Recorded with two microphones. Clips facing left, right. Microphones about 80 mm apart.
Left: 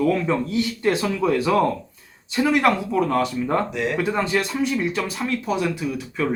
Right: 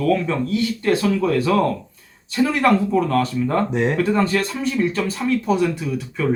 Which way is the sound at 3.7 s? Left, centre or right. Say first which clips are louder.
Right 5 dB; right.